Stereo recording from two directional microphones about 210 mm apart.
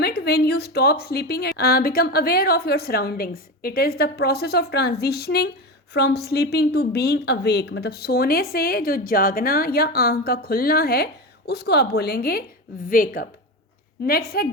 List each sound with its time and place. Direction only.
0.0 s a woman's voice: 50° left (ahead or behind)